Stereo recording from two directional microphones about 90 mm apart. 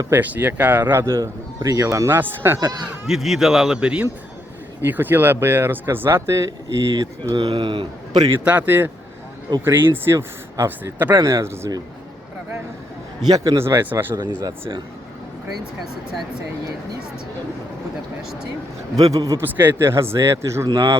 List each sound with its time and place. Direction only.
0.1 s speech: 20° right (ahead or behind); by 2.0 s 35° right (ahead or behind)
2.0 s speech: 20° right (ahead or behind)
3.1 s speech: 5° right (ahead or behind)
4.8 s speech: 20° right (ahead or behind); by 7.5 s 45° right (ahead or behind)
7.5 s a man's voice: 70° right (ahead or behind)
8.4 s speech: 20° right (ahead or behind); by 10.9 s 35° right (ahead or behind)
10.9 s speech: 20° right (ahead or behind)
11.2 s speech: 30° right (ahead or behind)
13.2 s a man's voice: 50° right (ahead or behind)
13.6 s speech: 30° right (ahead or behind)
18.9 s a man's voice: 45° right (ahead or behind)
19.4 s speech: 25° right (ahead or behind)